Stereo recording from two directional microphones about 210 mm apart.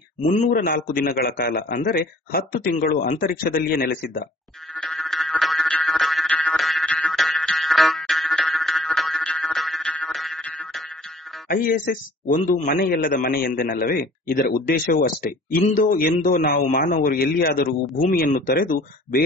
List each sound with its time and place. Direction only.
0.2 s a man's voice: 35° left (ahead or behind)
4.7 s music: centre (ahead or behind)
11.4 s a man's voice: 40° left (ahead or behind)